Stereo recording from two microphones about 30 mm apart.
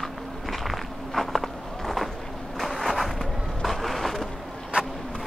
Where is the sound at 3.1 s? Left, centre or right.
Centre.